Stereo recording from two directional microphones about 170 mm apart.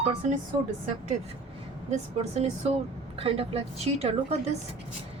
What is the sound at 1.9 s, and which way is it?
A woman's voice, 40° right (ahead or behind).